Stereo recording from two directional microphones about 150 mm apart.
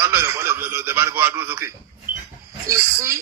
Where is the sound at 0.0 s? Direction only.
15° right (ahead or behind).